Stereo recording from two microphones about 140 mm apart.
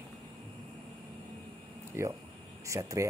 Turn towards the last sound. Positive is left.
turn(degrees=-20)  # may be behind; listen again after turning